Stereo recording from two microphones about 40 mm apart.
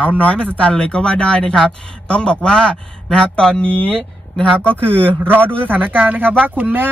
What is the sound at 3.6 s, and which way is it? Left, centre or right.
Speech, left.